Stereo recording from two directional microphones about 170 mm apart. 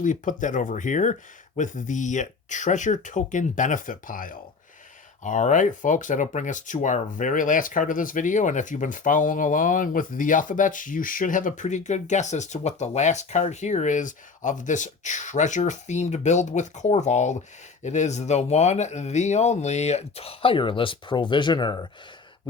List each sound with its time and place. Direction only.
0.0 s speech: 50° left (ahead or behind); by 21.8 s 25° left (ahead or behind)